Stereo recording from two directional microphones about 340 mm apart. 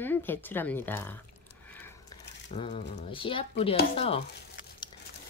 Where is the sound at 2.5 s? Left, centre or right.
Centre.